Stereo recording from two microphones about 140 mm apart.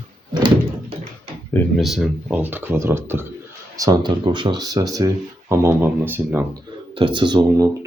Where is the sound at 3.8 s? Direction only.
30° right (ahead or behind); by 6.4 s 15° right (ahead or behind).